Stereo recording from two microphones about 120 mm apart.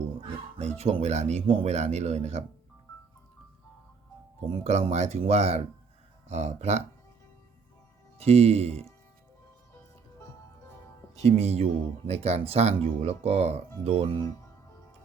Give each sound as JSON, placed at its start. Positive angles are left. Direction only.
{"t": 0.6, "sound": "speech", "side_deg": -60}
{"t": 4.4, "sound": "speech", "side_deg": -60}
{"t": 8.2, "sound": "speech", "side_deg": -55}
{"t": 11.2, "sound": "speech", "side_deg": -60}